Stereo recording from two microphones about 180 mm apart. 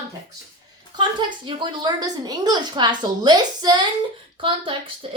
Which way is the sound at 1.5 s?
25° right (ahead or behind).